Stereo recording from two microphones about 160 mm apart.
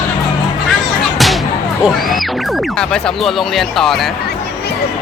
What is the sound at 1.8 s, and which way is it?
Speech, centre (ahead or behind).